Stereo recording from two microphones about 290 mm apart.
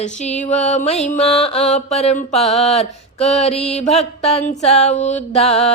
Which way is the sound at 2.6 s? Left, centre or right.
Left.